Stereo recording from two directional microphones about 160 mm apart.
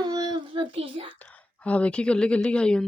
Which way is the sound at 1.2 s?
10° left (ahead or behind).